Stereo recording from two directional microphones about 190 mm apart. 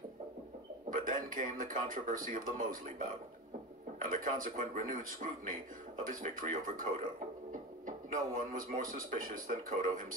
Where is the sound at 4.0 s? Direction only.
45° right (ahead or behind).